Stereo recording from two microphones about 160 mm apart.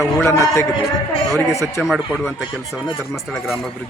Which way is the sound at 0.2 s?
15° left (ahead or behind).